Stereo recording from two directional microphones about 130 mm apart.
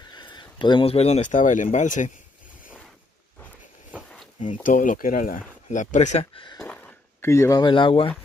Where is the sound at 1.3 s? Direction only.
80° left.